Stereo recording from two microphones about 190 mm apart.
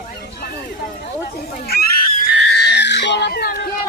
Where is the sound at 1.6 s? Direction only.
55° left (ahead or behind).